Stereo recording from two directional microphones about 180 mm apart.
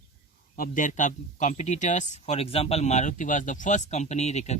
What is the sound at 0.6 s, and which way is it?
Speech, 45° left (ahead or behind).